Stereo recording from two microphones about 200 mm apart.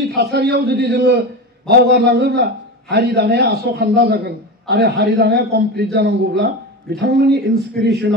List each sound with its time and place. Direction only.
0.0 s a man's voice: 55° right (ahead or behind)